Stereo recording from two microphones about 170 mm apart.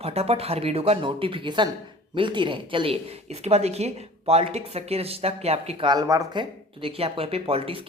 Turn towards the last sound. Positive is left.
turn(degrees=-35)  # may be behind; listen again after turning